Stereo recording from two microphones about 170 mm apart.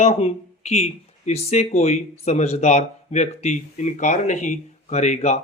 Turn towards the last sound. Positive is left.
turn(degrees=45)  # may be behind; listen again after turning